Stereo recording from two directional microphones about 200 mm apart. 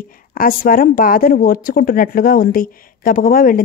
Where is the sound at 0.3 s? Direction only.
45° left (ahead or behind).